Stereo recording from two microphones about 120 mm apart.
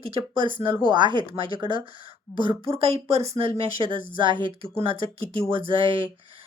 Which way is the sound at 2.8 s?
60° right (ahead or behind).